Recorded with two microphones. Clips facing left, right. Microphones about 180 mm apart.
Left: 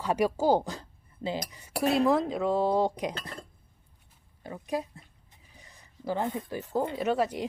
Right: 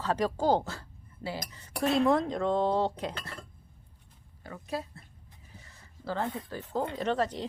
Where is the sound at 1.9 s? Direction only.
Centre (ahead or behind).